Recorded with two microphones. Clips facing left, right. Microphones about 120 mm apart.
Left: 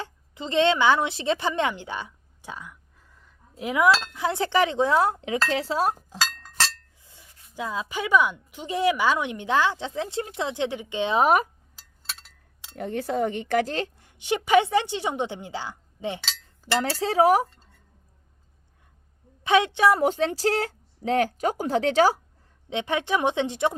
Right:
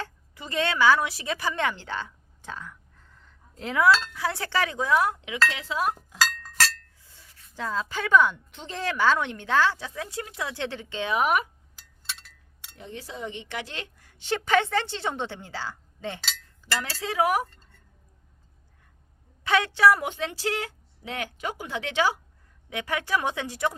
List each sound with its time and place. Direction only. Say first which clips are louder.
0.0 s a woman's voice: left 3 dB; 20° left (ahead or behind)
7.0 s a woman's voice: left 1 dB; 20° left (ahead or behind)
12.7 s speech: left 12 dB; 55° left (ahead or behind); by 14.0 s 35° left (ahead or behind)
14.0 s a woman's voice: left 3 dB; 15° left (ahead or behind)
16.9 s speech: left 5 dB; 35° left (ahead or behind)
17.4 s speech: left 4 dB; 5° left (ahead or behind)
19.5 s speech: left 1 dB; 20° left (ahead or behind)
20.0 s speech: left 8 dB; 35° left (ahead or behind)
22.7 s speech: left 3 dB; 25° left (ahead or behind)